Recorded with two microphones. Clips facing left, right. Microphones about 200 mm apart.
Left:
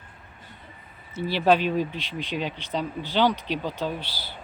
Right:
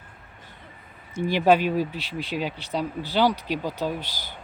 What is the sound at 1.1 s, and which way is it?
Speech, 15° right (ahead or behind).